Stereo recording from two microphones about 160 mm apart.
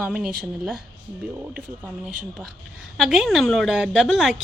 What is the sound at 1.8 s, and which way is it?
A woman's voice, 10° right (ahead or behind).